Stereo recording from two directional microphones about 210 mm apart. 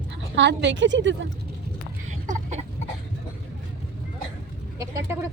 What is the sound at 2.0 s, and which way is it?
Chicken, 35° right (ahead or behind).